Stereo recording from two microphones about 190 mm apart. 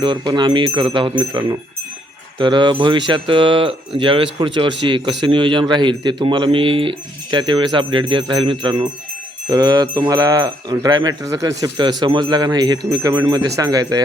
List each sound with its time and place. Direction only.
0.0 s speech: 25° right (ahead or behind)